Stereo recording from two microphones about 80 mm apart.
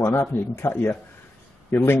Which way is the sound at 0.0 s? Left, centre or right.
Left.